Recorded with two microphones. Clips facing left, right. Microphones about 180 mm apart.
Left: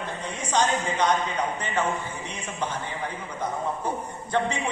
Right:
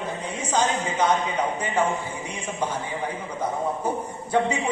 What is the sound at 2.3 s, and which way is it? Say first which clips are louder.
Speech: right 4 dB; 10° right (ahead or behind).